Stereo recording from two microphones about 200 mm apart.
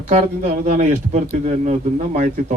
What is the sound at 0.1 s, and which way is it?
Speech, 35° right (ahead or behind).